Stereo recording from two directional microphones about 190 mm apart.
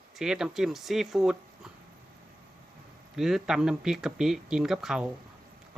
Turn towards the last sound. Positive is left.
turn(degrees=-5)  # may be behind; listen again after turning